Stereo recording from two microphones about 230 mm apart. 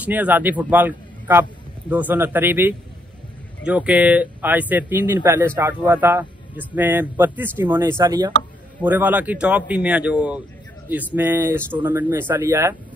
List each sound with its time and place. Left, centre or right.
0.0 s a man's voice: centre